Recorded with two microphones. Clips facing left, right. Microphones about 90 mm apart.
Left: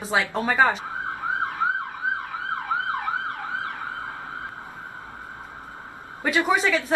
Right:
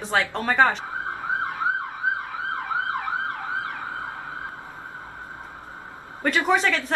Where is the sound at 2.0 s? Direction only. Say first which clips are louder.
Right 2 dB; 20° right (ahead or behind).